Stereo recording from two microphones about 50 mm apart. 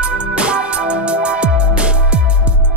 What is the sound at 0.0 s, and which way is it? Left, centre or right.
Music, right.